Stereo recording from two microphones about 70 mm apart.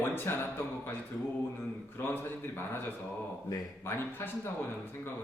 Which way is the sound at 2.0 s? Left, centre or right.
Left.